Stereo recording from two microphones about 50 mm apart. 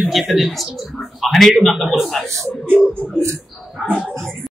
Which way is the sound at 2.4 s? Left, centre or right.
Centre.